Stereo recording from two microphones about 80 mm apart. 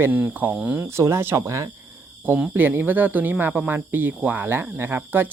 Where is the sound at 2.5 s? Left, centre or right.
Right.